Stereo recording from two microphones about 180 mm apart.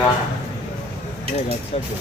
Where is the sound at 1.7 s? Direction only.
35° left (ahead or behind).